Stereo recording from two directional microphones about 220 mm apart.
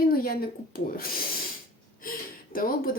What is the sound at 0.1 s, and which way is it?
Speech, 45° left (ahead or behind).